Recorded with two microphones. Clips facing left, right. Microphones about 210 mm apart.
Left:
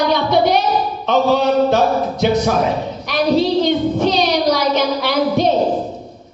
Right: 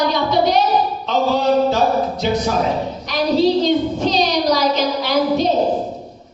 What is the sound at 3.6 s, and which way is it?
Child singing, 60° left (ahead or behind).